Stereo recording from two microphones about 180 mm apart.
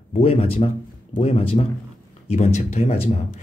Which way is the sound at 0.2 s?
35° left (ahead or behind).